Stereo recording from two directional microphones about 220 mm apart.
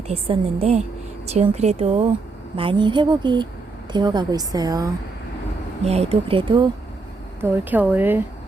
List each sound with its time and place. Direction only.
0.1 s a woman's voice: 25° right (ahead or behind)
5.8 s speech: 30° right (ahead or behind)
7.4 s a woman's voice: 10° right (ahead or behind)